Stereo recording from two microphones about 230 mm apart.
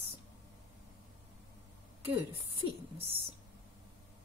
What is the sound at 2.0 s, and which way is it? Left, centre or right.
Speech, right.